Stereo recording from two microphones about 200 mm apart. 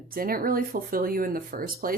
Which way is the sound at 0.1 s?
45° right (ahead or behind).